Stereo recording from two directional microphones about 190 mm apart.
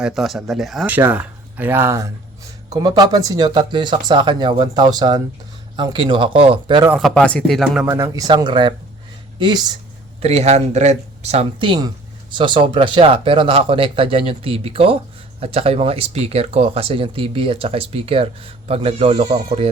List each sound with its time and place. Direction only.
0.0 s speech: centre (ahead or behind); by 6.8 s 25° right (ahead or behind)
7.0 s speech: 5° left (ahead or behind)
7.9 s speech: 15° right (ahead or behind)
10.2 s speech: 35° right (ahead or behind)